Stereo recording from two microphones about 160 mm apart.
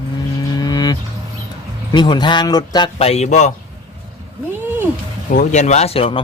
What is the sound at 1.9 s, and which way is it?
Speech, 25° left (ahead or behind).